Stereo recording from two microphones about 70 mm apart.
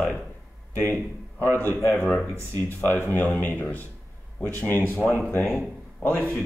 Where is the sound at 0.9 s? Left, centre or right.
Left.